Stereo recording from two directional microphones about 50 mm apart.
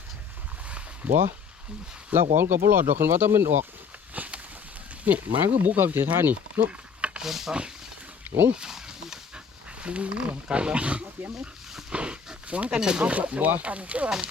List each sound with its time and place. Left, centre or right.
1.0 s speech: right
2.1 s speech: right
4.1 s a sound: right
5.0 s speech: right
5.5 s speech: right
6.7 s a sound: right
7.2 s speech: centre
8.5 s a sound: centre
9.8 s speech: right
11.3 s dog: centre
11.9 s speech: right